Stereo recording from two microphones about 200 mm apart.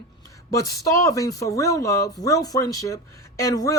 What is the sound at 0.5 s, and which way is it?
Speech, 15° left (ahead or behind).